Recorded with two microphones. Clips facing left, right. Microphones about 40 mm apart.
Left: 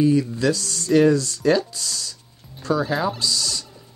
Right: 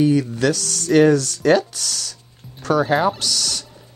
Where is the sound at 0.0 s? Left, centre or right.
Right.